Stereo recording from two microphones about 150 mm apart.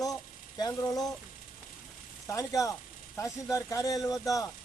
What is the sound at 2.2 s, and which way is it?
Speech, 20° left (ahead or behind).